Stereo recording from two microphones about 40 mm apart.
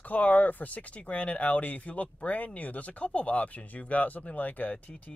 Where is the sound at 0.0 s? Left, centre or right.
Left.